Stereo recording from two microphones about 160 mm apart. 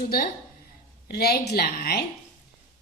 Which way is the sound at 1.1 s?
80° left.